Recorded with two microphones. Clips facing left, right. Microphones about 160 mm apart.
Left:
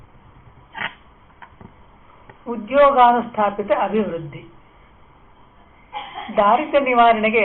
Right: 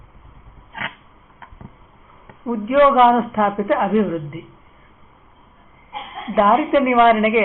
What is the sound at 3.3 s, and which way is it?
Speech, 20° left (ahead or behind).